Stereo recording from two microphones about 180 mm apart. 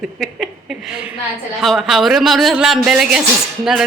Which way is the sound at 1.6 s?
Centre (ahead or behind).